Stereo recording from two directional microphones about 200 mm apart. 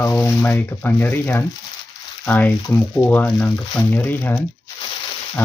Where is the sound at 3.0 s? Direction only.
5° left (ahead or behind).